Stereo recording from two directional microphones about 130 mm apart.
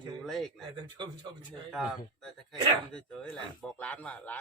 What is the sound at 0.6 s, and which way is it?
Speech, 35° right (ahead or behind).